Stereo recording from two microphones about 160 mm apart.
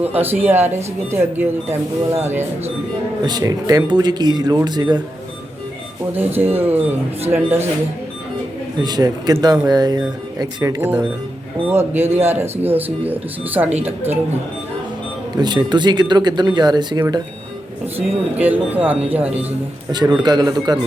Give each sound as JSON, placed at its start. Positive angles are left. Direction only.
{"t": 0.0, "sound": "speech", "side_deg": -10}
{"t": 3.2, "sound": "speech", "side_deg": -25}
{"t": 6.1, "sound": "speech", "side_deg": -15}
{"t": 8.8, "sound": "speech", "side_deg": -25}
{"t": 15.4, "sound": "speech", "side_deg": -25}
{"t": 17.9, "sound": "speech", "side_deg": -10}
{"t": 20.2, "sound": "speech", "side_deg": -25}